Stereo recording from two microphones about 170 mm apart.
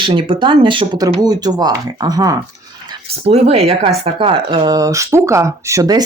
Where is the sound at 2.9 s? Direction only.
35° right (ahead or behind).